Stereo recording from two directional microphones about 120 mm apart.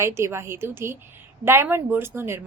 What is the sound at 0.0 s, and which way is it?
A woman's voice, 20° right (ahead or behind).